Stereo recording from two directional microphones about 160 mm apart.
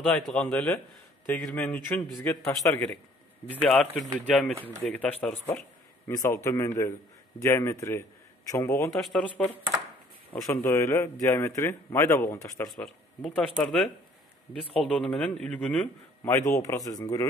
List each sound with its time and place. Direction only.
0.1 s a man's voice: 5° left (ahead or behind)
4.6 s speech: 15° right (ahead or behind)
4.8 s a man's voice: 10° left (ahead or behind)
8.9 s speech: centre (ahead or behind)
10.4 s a man's voice: 20° left (ahead or behind)
12.7 s speech: 5° left (ahead or behind)
16.6 s speech: 20° left (ahead or behind)